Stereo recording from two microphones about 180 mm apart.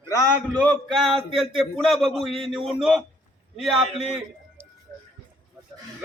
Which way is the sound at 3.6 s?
Centre (ahead or behind).